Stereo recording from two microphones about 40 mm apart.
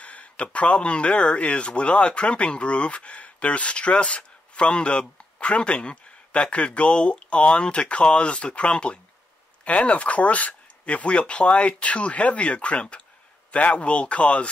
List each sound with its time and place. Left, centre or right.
0.0 s speech: left
11.1 s speech: left